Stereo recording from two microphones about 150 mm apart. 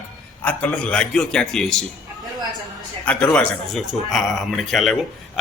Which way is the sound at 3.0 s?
10° left (ahead or behind).